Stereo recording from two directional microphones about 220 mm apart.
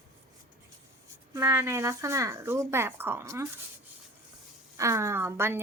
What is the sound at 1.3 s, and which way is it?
A woman's voice, 10° right (ahead or behind).